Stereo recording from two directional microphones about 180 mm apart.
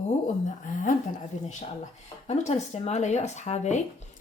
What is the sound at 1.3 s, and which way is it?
Speech, 40° left (ahead or behind).